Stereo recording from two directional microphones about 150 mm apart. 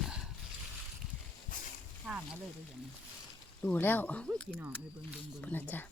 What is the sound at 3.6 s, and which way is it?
Speech, 10° left (ahead or behind).